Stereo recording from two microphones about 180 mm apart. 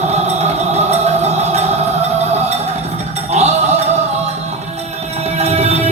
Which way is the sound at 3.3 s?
35° right (ahead or behind).